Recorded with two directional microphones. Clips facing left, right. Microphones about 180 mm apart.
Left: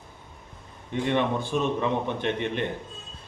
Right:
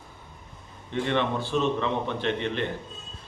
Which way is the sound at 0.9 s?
15° left (ahead or behind).